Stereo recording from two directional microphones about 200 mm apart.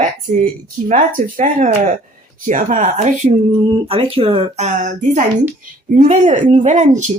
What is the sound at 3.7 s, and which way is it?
Speech, 25° right (ahead or behind).